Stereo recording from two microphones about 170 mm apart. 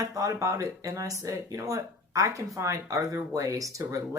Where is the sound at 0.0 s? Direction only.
20° right (ahead or behind).